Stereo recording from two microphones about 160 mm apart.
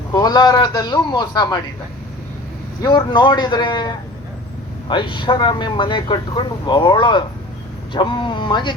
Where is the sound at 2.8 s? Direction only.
30° left (ahead or behind).